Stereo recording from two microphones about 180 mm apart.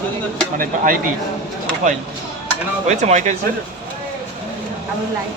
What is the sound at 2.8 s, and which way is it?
Speech, 40° right (ahead or behind).